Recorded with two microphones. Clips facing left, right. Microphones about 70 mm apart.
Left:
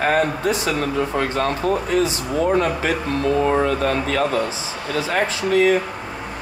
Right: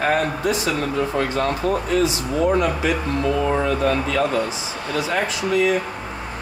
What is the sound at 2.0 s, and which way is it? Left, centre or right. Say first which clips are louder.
Speech: even; left.